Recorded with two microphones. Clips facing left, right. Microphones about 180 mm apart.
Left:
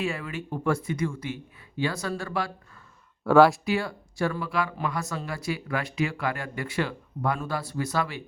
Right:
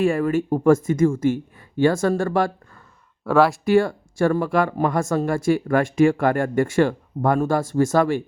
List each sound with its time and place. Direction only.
0.0 s speech: 50° right (ahead or behind)
3.2 s speech: centre (ahead or behind)
3.7 s speech: 50° right (ahead or behind)